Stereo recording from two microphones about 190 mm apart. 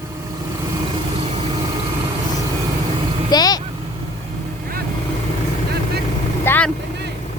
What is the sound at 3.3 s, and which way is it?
Speech, 20° left (ahead or behind).